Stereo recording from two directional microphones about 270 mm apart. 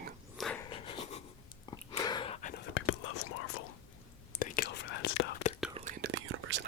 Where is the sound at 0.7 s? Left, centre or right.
Left.